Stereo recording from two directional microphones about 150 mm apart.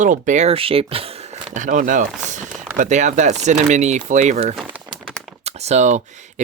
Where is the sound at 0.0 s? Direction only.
55° right (ahead or behind); by 1.4 s 40° right (ahead or behind).